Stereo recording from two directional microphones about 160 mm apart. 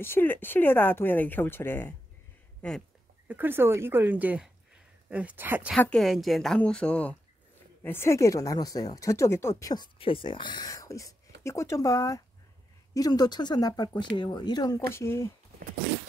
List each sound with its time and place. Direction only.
0.0 s speech: 15° left (ahead or behind)
3.3 s speech: 10° right (ahead or behind)
5.8 s a woman's voice: 5° left (ahead or behind); by 9.8 s 20° left (ahead or behind)
9.9 s a woman's voice: 35° left (ahead or behind); by 15.3 s 15° left (ahead or behind)